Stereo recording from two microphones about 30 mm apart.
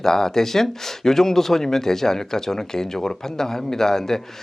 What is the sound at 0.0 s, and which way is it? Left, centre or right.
Speech, centre.